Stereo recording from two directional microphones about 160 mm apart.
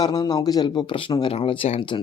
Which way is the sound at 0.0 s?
25° left (ahead or behind).